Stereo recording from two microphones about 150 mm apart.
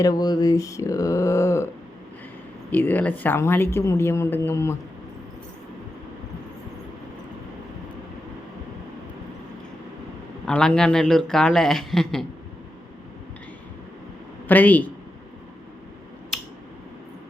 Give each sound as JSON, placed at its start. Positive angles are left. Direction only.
{"t": 0.0, "sound": "speech", "side_deg": 25}
{"t": 2.6, "sound": "speech", "side_deg": 10}
{"t": 10.4, "sound": "a man's voice", "side_deg": 5}
{"t": 14.4, "sound": "speech", "side_deg": 10}